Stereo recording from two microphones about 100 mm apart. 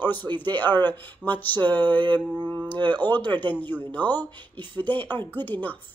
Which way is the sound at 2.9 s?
20° left (ahead or behind).